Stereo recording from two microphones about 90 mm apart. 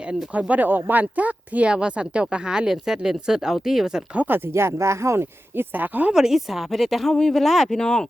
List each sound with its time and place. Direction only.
0.1 s speech: 15° right (ahead or behind)
6.1 s speech: 5° right (ahead or behind)